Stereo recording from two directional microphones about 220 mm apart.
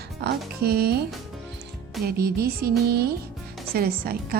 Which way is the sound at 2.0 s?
45° right (ahead or behind).